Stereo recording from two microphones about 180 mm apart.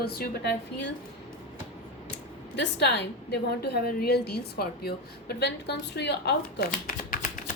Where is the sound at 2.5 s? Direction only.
75° left (ahead or behind).